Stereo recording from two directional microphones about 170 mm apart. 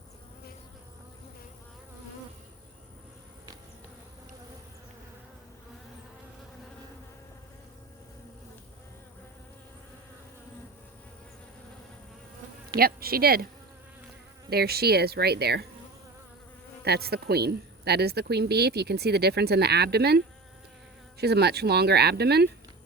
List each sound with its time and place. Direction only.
12.7 s speech: 60° right (ahead or behind)
14.5 s a woman's voice: 65° right (ahead or behind)
16.8 s a woman's voice: 70° right (ahead or behind)